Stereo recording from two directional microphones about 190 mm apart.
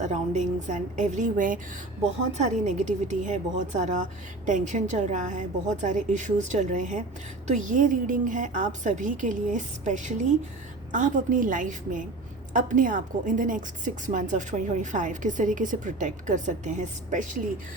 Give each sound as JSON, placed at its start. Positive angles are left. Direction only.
{"t": 0.0, "sound": "a woman's voice", "side_deg": -40}